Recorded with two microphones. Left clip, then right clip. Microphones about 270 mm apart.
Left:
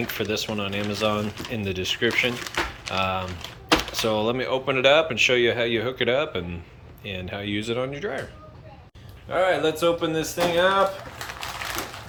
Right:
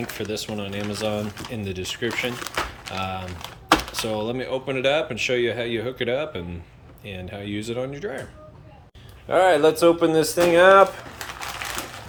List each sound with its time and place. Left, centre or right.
0.2 s speech: centre
9.3 s speech: right